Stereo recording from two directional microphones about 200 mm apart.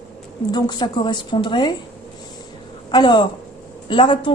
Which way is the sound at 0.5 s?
20° left (ahead or behind).